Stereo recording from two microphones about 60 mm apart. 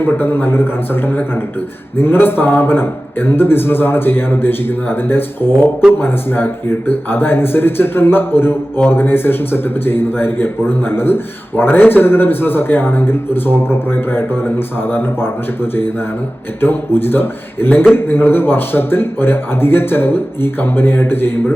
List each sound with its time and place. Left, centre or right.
0.0 s a man's voice: left